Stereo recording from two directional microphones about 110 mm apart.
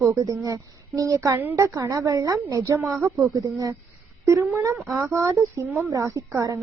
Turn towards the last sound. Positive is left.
turn(degrees=-30)  # may be behind; listen again after turning